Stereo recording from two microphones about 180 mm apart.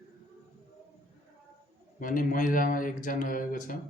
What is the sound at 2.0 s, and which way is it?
Speech, 50° left (ahead or behind).